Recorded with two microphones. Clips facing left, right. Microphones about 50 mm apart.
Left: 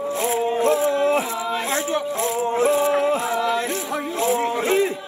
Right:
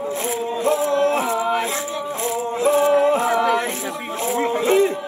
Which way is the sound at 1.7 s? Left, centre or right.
Left.